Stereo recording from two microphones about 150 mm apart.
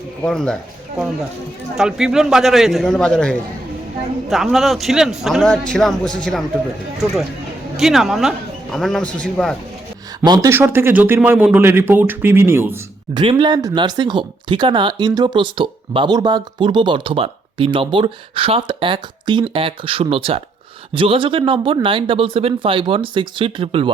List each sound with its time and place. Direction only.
0.2 s a man's voice: 5° left (ahead or behind)
1.7 s a man's voice: 5° right (ahead or behind)
7.8 s a man's voice: centre (ahead or behind)
10.2 s speech: 25° right (ahead or behind)